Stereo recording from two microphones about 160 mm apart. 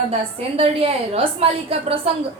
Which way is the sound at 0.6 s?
35° right (ahead or behind).